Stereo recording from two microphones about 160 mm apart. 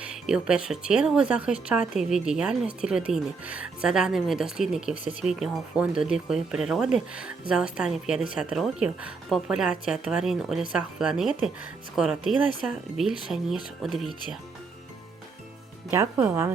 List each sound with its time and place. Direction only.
0.0 s speech: 5° right (ahead or behind)
15.9 s speech: 10° right (ahead or behind)